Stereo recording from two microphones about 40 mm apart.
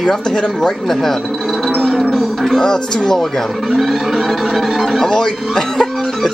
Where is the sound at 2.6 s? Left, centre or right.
Centre.